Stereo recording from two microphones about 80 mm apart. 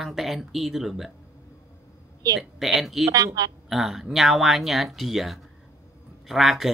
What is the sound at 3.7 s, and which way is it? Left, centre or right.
Speech, centre.